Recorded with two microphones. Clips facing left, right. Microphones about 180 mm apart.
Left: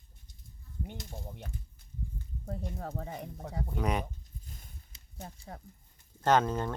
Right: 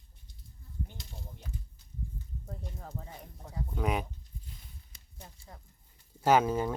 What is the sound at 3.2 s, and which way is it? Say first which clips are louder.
Speech: left 6 dB; 70° left (ahead or behind).